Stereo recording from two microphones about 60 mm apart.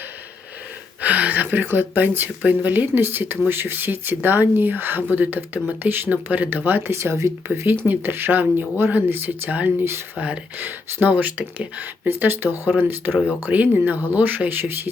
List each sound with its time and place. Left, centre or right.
1.0 s speech: right
7.4 s speech: right
7.9 s speech: right
12.0 s speech: right